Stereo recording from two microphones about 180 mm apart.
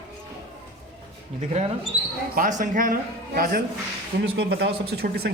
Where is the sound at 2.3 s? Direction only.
50° right (ahead or behind).